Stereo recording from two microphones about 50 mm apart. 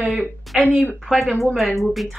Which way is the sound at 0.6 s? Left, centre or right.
Right.